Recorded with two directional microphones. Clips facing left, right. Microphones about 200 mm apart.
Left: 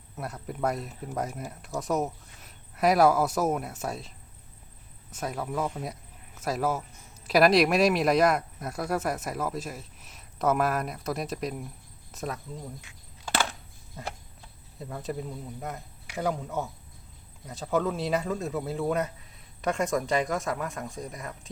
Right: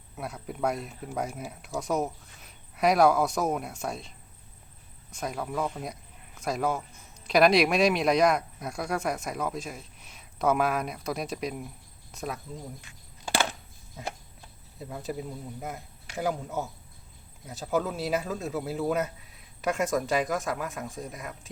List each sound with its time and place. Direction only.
0.2 s speech: centre (ahead or behind)
5.1 s speech: centre (ahead or behind)
12.9 s walk: centre (ahead or behind)
14.8 s a man's voice: 5° right (ahead or behind)